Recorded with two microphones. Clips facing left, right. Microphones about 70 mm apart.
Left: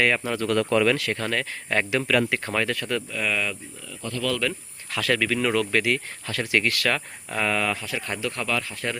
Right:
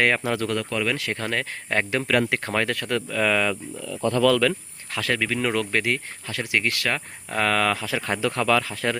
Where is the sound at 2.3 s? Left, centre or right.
Right.